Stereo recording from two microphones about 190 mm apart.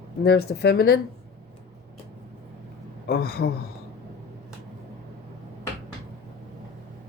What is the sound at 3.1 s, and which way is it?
Speech, 55° left (ahead or behind).